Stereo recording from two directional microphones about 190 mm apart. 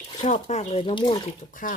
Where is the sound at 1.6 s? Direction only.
45° left (ahead or behind).